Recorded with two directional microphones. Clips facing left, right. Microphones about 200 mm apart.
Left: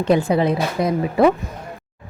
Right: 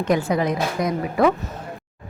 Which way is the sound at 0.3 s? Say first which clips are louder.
Left 3 dB; 30° left (ahead or behind).